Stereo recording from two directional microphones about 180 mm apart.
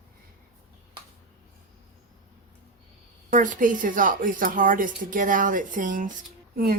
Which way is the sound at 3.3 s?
45° right (ahead or behind).